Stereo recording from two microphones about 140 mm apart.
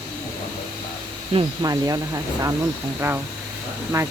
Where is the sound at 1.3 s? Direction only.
30° right (ahead or behind).